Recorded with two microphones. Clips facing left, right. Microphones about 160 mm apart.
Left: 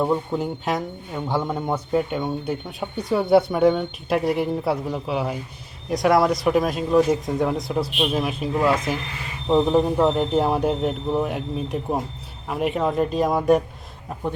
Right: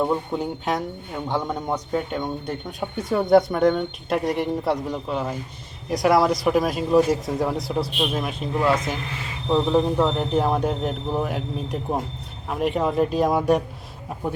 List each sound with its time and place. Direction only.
0.0 s a man's voice: centre (ahead or behind)